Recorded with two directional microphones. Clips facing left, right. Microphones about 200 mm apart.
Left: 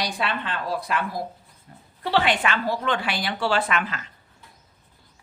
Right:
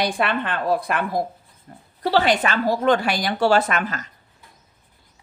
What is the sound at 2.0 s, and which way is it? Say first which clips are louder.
A woman's voice: right 4 dB; 40° right (ahead or behind).